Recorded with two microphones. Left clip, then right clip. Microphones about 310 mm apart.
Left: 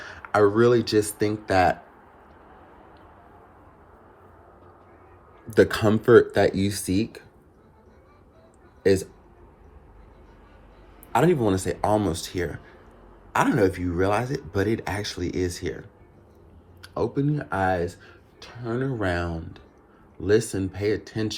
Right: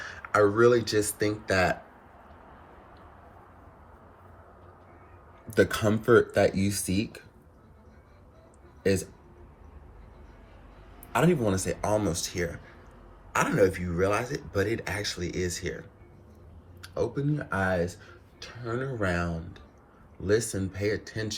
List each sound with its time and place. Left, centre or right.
0.0 s speech: centre
5.5 s speech: left
11.1 s speech: left